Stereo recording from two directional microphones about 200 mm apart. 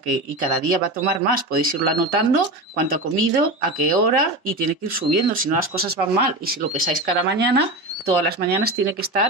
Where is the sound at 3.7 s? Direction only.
45° right (ahead or behind).